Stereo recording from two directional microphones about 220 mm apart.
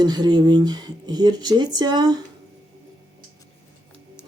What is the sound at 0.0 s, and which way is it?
Speech, 20° right (ahead or behind).